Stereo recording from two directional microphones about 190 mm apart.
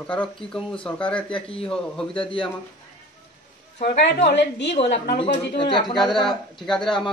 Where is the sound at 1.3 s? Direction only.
30° left (ahead or behind).